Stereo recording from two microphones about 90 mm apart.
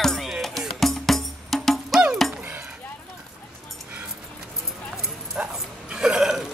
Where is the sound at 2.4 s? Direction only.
20° right (ahead or behind).